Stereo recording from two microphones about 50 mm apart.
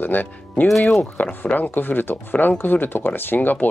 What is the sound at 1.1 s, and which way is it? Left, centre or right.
Speech, left.